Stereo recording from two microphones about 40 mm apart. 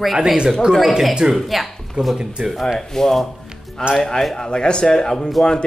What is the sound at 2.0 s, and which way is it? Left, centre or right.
Speech, right.